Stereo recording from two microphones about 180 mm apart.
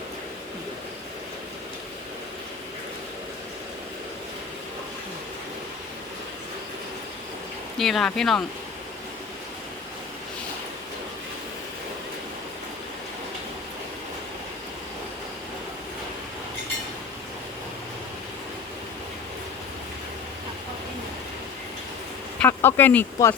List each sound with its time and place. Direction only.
7.8 s speech: centre (ahead or behind)
22.4 s speech: 10° left (ahead or behind)